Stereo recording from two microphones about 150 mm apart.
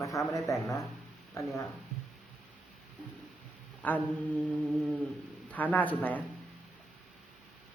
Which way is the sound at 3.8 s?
10° left (ahead or behind).